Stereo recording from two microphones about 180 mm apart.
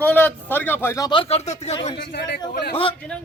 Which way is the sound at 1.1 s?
30° left (ahead or behind).